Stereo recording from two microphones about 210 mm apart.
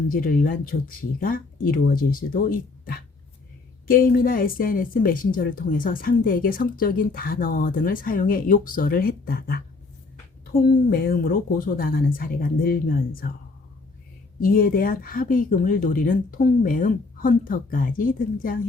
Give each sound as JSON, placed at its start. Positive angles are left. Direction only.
{"t": 0.1, "sound": "speech", "side_deg": 40}
{"t": 14.4, "sound": "speech", "side_deg": 40}